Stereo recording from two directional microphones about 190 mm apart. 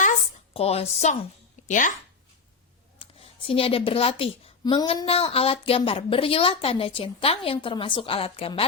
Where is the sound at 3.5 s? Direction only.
30° left (ahead or behind).